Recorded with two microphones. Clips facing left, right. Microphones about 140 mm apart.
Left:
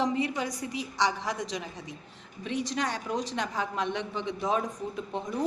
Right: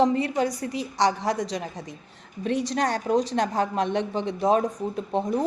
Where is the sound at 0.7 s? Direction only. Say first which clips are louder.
Right 5 dB; 35° right (ahead or behind).